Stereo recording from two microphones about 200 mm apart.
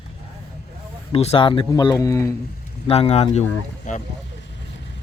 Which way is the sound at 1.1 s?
30° left (ahead or behind).